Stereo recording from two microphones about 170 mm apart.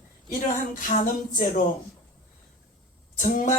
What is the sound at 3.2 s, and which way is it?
Speech, 50° left (ahead or behind).